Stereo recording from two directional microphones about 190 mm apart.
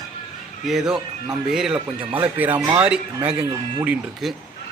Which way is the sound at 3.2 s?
25° right (ahead or behind).